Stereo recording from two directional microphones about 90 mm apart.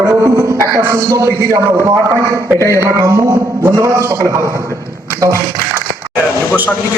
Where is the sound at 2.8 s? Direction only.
35° right (ahead or behind).